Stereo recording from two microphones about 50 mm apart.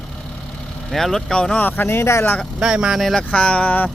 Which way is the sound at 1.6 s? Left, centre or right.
Left.